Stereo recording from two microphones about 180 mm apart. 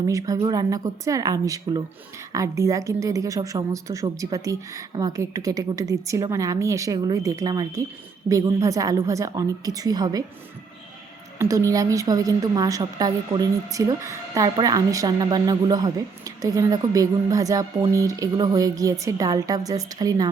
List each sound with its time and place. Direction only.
0.1 s a woman's voice: 20° right (ahead or behind)
11.3 s a woman's voice: 15° right (ahead or behind)